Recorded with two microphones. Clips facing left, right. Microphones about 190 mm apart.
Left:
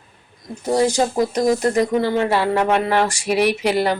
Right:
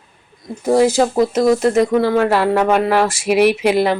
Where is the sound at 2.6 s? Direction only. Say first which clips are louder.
Right 3 dB; 50° right (ahead or behind).